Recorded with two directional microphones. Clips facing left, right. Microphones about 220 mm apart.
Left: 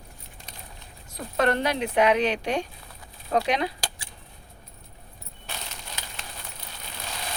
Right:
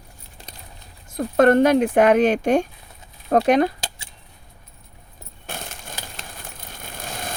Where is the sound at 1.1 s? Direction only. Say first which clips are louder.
Right 10 dB; 50° right (ahead or behind).